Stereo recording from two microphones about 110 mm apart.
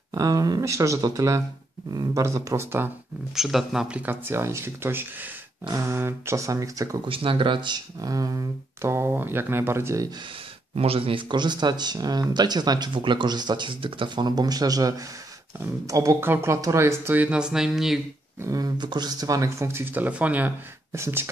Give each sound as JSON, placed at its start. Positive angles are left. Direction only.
{"t": 0.1, "sound": "speech", "side_deg": -35}
{"t": 3.3, "sound": "speech", "side_deg": -5}
{"t": 7.1, "sound": "speech", "side_deg": -55}
{"t": 10.7, "sound": "speech", "side_deg": -65}
{"t": 18.4, "sound": "speech", "side_deg": -35}